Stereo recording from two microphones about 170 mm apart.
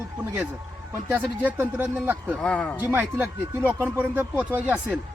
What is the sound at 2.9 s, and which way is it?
Speech, 10° right (ahead or behind).